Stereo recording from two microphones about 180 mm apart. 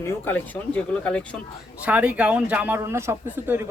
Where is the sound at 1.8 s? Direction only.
5° right (ahead or behind).